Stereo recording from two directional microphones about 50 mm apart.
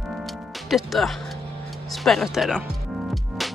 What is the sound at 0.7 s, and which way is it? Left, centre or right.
Speech, centre.